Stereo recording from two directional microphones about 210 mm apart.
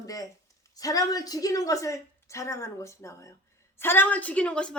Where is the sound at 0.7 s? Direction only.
15° left (ahead or behind).